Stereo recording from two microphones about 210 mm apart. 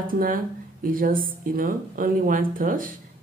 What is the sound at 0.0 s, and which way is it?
A woman's voice, 40° right (ahead or behind).